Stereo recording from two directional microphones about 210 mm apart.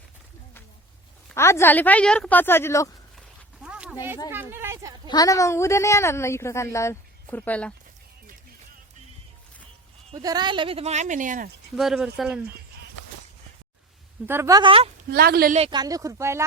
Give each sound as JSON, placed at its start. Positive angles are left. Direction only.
{"t": 1.3, "sound": "a woman's voice", "side_deg": 10}
{"t": 3.2, "sound": "dog", "side_deg": -5}
{"t": 4.3, "sound": "speech", "side_deg": -10}
{"t": 5.0, "sound": "a woman's voice", "side_deg": 15}
{"t": 10.1, "sound": "speech", "side_deg": -20}
{"t": 11.8, "sound": "speech", "side_deg": -5}
{"t": 14.3, "sound": "speech", "side_deg": -10}
{"t": 15.1, "sound": "speech", "side_deg": -45}
{"t": 15.5, "sound": "speech", "side_deg": -25}